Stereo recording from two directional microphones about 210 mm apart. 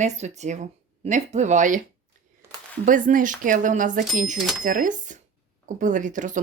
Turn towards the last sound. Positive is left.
turn(degrees=-35)  # may be behind; listen again after turning